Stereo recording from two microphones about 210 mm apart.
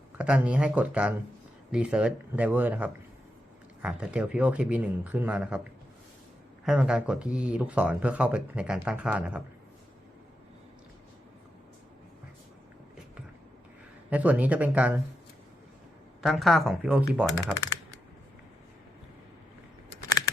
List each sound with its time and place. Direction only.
0.2 s speech: 5° right (ahead or behind)
6.7 s speech: 5° right (ahead or behind)
14.1 s speech: 5° right (ahead or behind)
16.2 s speech: centre (ahead or behind)
17.5 s typing: 15° left (ahead or behind)